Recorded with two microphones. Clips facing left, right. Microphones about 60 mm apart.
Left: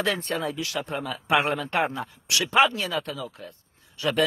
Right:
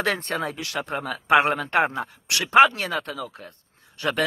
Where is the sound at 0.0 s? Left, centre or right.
Right.